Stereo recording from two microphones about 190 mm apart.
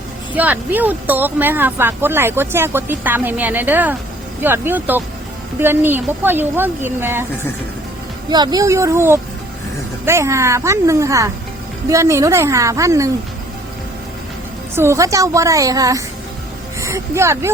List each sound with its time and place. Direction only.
0.3 s speech: 10° right (ahead or behind)
8.3 s speech: 20° right (ahead or behind)
14.8 s speech: 15° right (ahead or behind)